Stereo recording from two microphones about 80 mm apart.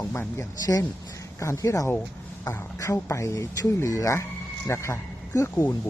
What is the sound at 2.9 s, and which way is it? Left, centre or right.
Speech, left.